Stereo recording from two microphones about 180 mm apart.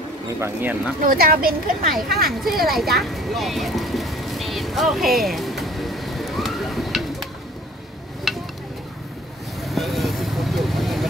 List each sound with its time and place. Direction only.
0.4 s speech: 10° right (ahead or behind)
1.0 s speech: 55° right (ahead or behind)
2.6 s speech: centre (ahead or behind)
3.0 s vehicle: centre (ahead or behind)
8.3 s a sound: centre (ahead or behind)
9.6 s vehicle: centre (ahead or behind)